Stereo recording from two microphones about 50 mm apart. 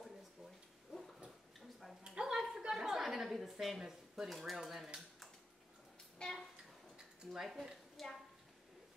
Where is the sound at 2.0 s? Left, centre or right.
Centre.